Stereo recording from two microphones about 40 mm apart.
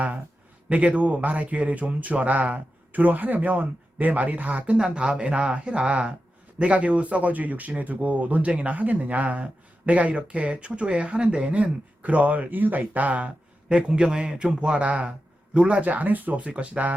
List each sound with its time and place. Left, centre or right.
0.7 s speech: right
4.8 s speech: right
13.7 s speech: right
15.8 s speech: right
16.4 s speech: right